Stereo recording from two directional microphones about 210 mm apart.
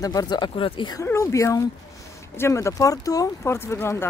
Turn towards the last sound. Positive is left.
turn(degrees=10)  # may be behind; listen again after turning